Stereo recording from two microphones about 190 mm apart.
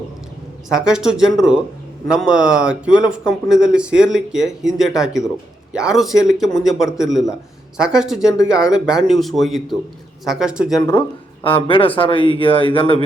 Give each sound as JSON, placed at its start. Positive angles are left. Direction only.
{"t": 0.7, "sound": "speech", "side_deg": -5}
{"t": 10.8, "sound": "speech", "side_deg": 15}
{"t": 11.4, "sound": "speech", "side_deg": 25}